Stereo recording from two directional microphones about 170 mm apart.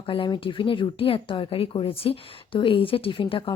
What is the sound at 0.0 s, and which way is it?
A woman's voice, 30° left (ahead or behind).